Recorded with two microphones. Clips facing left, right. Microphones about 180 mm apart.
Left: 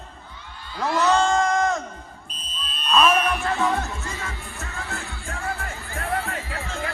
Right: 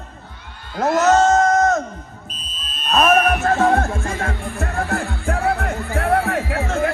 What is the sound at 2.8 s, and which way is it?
Speech, 45° right (ahead or behind).